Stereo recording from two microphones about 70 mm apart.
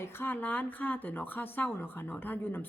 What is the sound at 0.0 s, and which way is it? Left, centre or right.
Speech, left.